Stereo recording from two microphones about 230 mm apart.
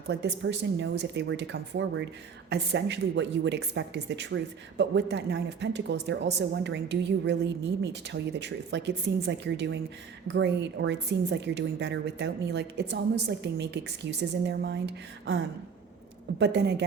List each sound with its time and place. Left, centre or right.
0.1 s a woman's voice: right
16.4 s a woman's voice: right